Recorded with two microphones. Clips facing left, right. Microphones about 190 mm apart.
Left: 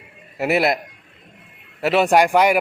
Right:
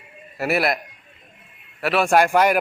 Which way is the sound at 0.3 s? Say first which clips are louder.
Left 3 dB; 20° left (ahead or behind).